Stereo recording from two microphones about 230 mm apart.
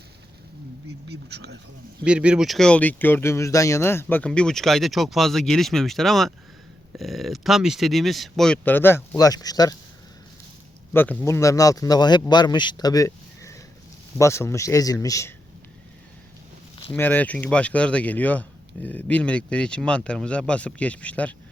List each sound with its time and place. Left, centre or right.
1.0 s speech: right
2.0 s speech: centre
10.9 s speech: centre
16.9 s speech: centre